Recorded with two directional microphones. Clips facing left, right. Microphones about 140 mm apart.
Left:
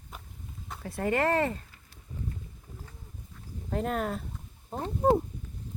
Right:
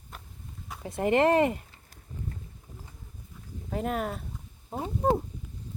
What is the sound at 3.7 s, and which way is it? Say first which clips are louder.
Speech: even; 5° right (ahead or behind).